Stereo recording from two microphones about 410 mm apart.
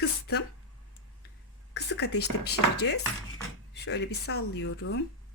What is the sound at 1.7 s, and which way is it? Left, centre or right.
Speech, left.